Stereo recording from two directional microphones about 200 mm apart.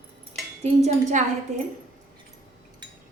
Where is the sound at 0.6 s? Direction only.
35° right (ahead or behind).